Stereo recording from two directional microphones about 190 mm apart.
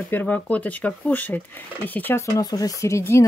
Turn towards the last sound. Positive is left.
turn(degrees=15)  # may be behind; listen again after turning